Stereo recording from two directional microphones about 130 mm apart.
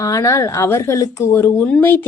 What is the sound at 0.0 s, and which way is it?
A woman's voice, 25° left (ahead or behind).